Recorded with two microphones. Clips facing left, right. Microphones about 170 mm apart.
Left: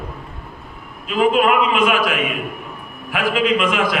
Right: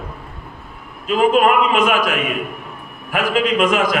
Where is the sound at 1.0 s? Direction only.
45° right (ahead or behind).